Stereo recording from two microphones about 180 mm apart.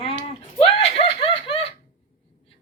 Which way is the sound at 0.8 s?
35° left (ahead or behind).